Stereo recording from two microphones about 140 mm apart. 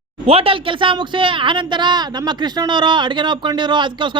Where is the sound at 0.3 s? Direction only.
40° right (ahead or behind).